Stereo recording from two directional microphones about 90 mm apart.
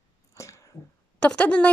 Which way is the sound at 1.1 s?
15° left (ahead or behind).